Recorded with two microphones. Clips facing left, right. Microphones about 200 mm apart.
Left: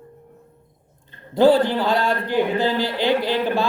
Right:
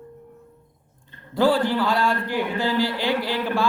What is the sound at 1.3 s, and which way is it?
A man's voice, 20° left (ahead or behind).